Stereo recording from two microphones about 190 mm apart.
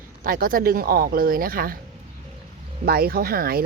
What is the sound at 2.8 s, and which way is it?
Speech, 50° right (ahead or behind).